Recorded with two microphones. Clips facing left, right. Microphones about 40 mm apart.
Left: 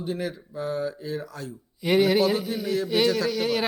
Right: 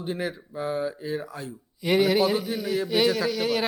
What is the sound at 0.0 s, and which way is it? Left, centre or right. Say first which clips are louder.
Speech: even; centre.